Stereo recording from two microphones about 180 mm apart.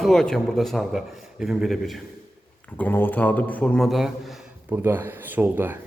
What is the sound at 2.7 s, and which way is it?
A man's voice, 10° left (ahead or behind).